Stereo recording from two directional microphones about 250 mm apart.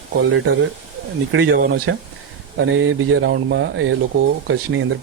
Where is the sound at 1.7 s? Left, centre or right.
Right.